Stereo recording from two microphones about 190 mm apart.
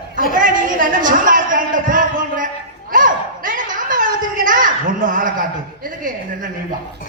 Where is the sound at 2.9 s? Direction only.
45° right (ahead or behind).